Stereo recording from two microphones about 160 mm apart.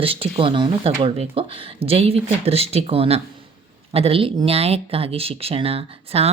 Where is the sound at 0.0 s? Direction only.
35° right (ahead or behind).